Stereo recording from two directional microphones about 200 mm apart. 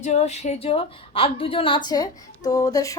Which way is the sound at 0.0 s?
35° left (ahead or behind).